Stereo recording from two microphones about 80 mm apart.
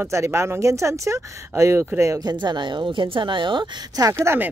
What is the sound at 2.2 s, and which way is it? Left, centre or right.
A woman's voice, right.